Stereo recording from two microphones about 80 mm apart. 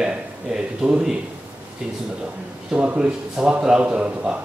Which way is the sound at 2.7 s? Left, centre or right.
Centre.